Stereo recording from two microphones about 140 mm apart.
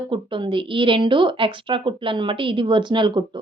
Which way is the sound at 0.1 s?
35° right (ahead or behind).